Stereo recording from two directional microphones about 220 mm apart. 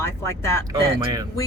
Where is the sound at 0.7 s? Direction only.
15° right (ahead or behind).